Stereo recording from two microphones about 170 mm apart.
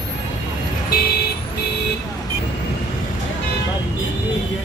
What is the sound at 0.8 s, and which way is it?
Vehicle, 60° left (ahead or behind).